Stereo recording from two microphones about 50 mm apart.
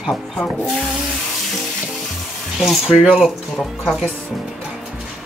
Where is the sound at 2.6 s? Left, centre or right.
Centre.